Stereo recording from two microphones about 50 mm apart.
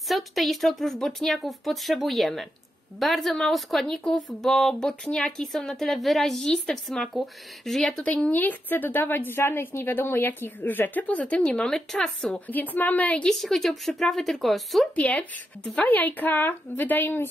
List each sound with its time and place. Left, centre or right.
0.1 s speech: centre
5.0 s speech: left
5.4 s speech: centre
8.0 s a woman's voice: left
11.4 s speech: centre
12.4 s a woman's voice: left
13.4 s speech: centre
15.0 s a woman's voice: left